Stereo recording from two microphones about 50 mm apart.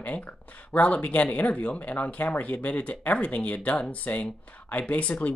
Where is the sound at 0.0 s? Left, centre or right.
Left.